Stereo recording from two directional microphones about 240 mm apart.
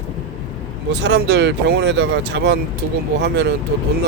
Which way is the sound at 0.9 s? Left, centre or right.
Right.